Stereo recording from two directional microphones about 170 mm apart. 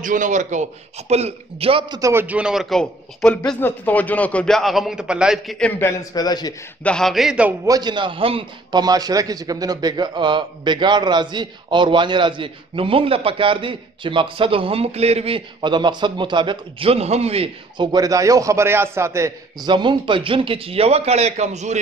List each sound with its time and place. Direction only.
0.0 s a man's voice: 50° right (ahead or behind); by 2.0 s 30° right (ahead or behind)
2.0 s a man's voice: 15° right (ahead or behind); by 6.5 s 25° left (ahead or behind)
6.8 s a man's voice: 5° left (ahead or behind)
7.6 s a man's voice: 25° right (ahead or behind)
17.9 s a man's voice: 20° right (ahead or behind); by 21.7 s 40° right (ahead or behind)